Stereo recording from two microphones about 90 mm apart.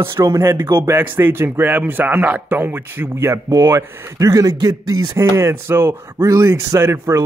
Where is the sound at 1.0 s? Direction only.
25° right (ahead or behind).